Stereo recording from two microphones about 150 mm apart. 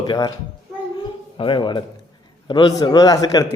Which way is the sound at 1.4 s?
35° left (ahead or behind).